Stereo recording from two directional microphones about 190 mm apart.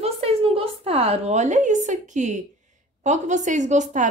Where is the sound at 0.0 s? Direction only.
30° right (ahead or behind).